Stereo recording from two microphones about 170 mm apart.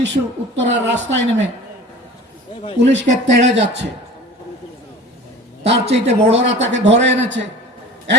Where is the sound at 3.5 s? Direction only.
90° right.